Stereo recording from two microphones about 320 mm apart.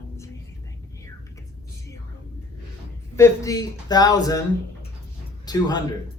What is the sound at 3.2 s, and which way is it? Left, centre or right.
Speech, centre.